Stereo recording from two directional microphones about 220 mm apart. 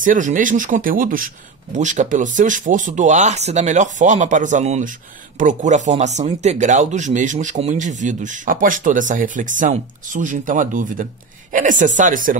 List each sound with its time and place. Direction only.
0.0 s speech: 35° right (ahead or behind)